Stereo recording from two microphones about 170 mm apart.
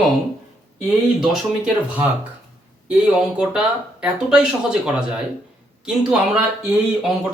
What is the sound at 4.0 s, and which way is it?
Speech, 5° right (ahead or behind).